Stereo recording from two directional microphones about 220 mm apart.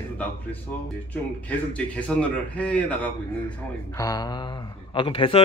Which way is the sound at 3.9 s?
15° left (ahead or behind).